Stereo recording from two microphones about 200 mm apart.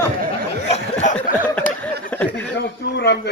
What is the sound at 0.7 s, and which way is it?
Snicker, 35° left (ahead or behind).